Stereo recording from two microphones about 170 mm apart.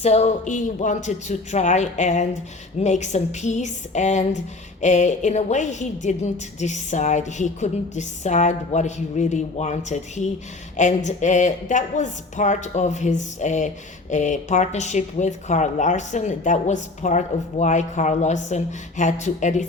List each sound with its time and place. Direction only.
0.0 s speech: 40° left (ahead or behind)